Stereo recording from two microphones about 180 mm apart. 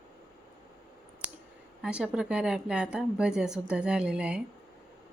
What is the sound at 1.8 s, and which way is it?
Speech, 5° right (ahead or behind).